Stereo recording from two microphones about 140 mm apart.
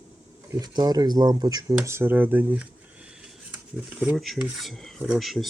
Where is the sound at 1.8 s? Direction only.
15° right (ahead or behind).